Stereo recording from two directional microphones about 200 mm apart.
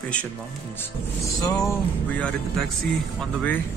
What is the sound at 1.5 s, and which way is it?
Speech, 15° left (ahead or behind).